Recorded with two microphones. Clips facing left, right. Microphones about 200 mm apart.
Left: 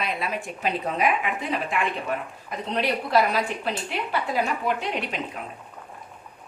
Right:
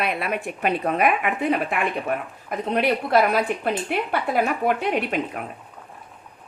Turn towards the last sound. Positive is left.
turn(degrees=-55)  # may be behind; listen again after turning